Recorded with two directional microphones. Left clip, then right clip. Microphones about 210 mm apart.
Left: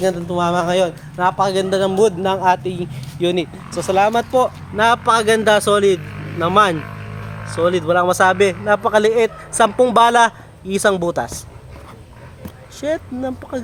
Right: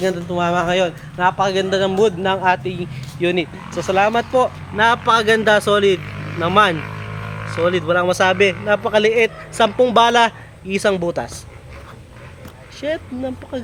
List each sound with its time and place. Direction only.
0.0 s a man's voice: 15° left (ahead or behind)
12.8 s a man's voice: 15° left (ahead or behind)